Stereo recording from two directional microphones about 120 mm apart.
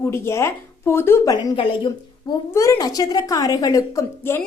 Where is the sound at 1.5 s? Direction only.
40° left (ahead or behind).